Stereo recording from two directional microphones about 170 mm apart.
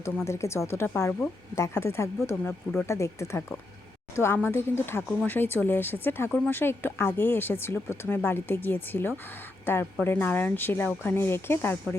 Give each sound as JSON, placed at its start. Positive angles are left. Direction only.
{"t": 0.3, "sound": "speech", "side_deg": 15}